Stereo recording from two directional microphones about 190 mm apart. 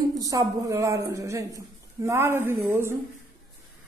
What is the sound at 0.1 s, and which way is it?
A woman's voice, 20° right (ahead or behind).